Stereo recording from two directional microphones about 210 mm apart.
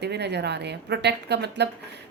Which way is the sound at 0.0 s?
55° right (ahead or behind).